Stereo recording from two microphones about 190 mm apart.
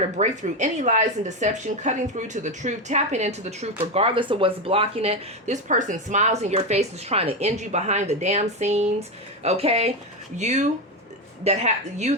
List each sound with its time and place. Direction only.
0.2 s speech: 40° right (ahead or behind)